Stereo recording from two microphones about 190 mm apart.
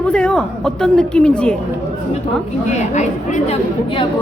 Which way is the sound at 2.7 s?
35° left (ahead or behind).